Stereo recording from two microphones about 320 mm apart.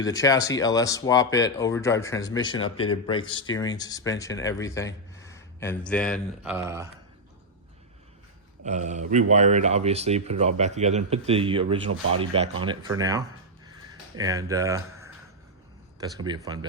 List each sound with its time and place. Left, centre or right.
0.0 s speech: centre
8.6 s speech: right
11.9 s speech: right
12.2 s speech: centre
16.0 s speech: centre